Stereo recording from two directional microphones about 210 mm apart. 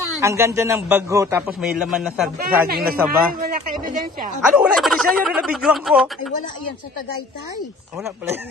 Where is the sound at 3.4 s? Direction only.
40° right (ahead or behind).